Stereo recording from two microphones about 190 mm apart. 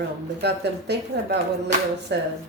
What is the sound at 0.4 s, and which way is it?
Speech, 60° right (ahead or behind).